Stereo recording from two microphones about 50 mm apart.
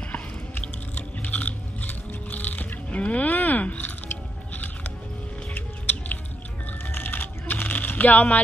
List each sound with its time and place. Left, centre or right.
0.1 s biting: left
5.5 s music: left
6.9 s typing: left